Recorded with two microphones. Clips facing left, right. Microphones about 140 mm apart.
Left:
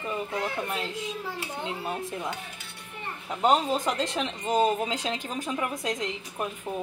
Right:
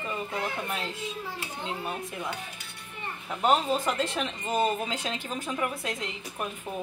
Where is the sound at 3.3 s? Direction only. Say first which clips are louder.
Left 1 dB; 20° left (ahead or behind).